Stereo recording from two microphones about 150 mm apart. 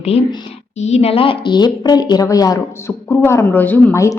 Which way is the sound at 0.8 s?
45° left (ahead or behind).